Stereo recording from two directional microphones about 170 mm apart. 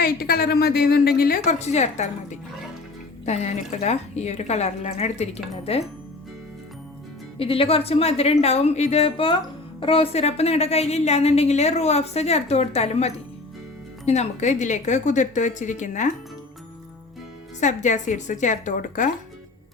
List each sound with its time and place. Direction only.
0.0 s a woman's voice: 65° left (ahead or behind)
1.5 s a woman's voice: 40° left (ahead or behind)
3.2 s a woman's voice: 40° left (ahead or behind)
7.3 s a woman's voice: 35° left (ahead or behind)
17.6 s speech: 45° left (ahead or behind)